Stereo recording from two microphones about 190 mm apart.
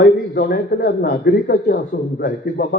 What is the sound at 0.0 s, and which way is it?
A man's voice, 55° left (ahead or behind).